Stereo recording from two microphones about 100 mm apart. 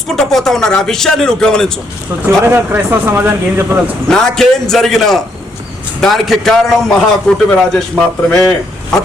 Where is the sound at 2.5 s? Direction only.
20° right (ahead or behind).